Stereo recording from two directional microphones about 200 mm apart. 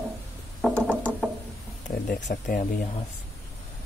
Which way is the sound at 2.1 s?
60° left (ahead or behind).